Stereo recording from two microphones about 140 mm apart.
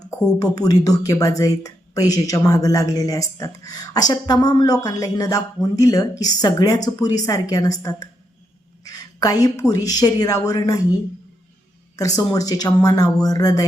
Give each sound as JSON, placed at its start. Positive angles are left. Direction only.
{"t": 0.3, "sound": "speech", "side_deg": 25}
{"t": 11.9, "sound": "speech", "side_deg": 25}